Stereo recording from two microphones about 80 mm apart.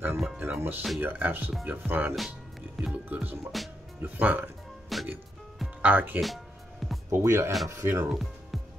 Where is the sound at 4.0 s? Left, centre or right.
Right.